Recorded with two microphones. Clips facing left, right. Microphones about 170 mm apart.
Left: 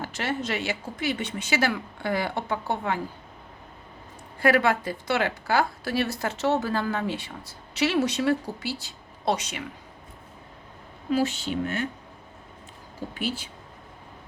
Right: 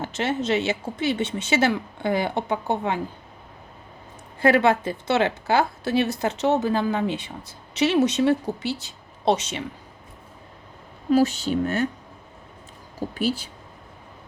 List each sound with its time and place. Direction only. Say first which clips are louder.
0.0 s speech: right 4 dB; 20° right (ahead or behind)
4.4 s speech: right 3 dB; 25° right (ahead or behind)
11.1 s speech: right 6 dB; 40° right (ahead or behind)
13.0 s speech: right 6 dB; 40° right (ahead or behind)